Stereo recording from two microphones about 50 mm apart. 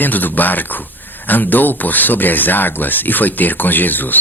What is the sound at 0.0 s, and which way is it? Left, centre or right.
Speech, left.